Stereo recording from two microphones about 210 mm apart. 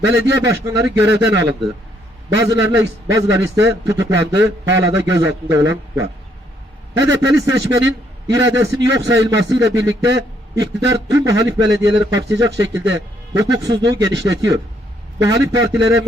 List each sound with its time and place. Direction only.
0.1 s a man's voice: 15° right (ahead or behind)